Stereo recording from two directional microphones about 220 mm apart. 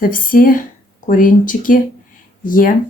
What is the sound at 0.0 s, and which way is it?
Speech, 40° left (ahead or behind).